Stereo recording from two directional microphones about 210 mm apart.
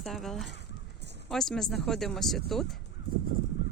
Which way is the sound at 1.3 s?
Centre (ahead or behind).